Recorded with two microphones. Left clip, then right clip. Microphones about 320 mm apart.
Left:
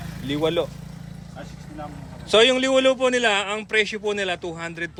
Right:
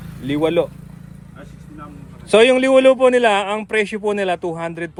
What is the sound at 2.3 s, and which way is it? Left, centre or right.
Speech, centre.